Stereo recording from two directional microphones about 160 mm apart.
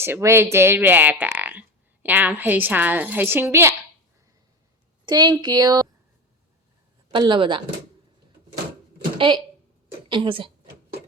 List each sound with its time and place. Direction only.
0.0 s speech: 15° right (ahead or behind)
5.0 s speech: 25° right (ahead or behind)
7.1 s speech: 30° right (ahead or behind)
9.1 s a woman's voice: 30° right (ahead or behind)